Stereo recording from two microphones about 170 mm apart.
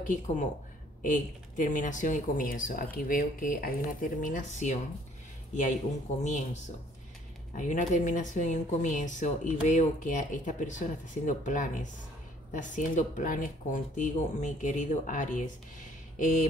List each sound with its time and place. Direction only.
0.0 s a woman's voice: 50° left (ahead or behind)
6.2 s a woman's voice: 45° left (ahead or behind)